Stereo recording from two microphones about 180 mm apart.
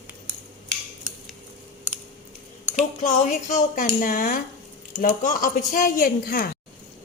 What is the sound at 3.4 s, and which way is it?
A woman's voice, 45° left (ahead or behind).